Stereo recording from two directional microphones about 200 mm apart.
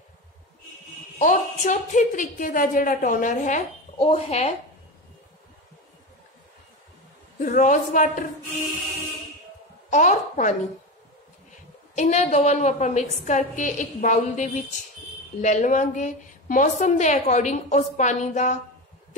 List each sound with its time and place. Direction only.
1.1 s a woman's voice: 40° left (ahead or behind)
7.3 s a woman's voice: 40° left (ahead or behind)
9.8 s a woman's voice: 40° left (ahead or behind)
11.9 s a woman's voice: 35° left (ahead or behind)